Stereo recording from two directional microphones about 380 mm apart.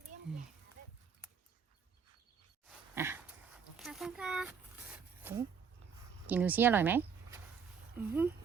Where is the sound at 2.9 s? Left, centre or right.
Centre.